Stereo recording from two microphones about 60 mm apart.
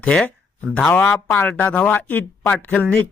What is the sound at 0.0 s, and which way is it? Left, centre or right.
Speech, centre.